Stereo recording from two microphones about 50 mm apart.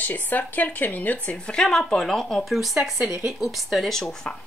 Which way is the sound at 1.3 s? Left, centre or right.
Centre.